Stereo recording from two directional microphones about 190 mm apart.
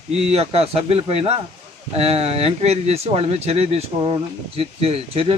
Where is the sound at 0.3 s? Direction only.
30° right (ahead or behind).